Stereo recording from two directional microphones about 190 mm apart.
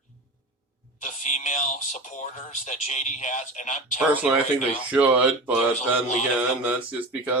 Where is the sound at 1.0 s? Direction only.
40° left (ahead or behind).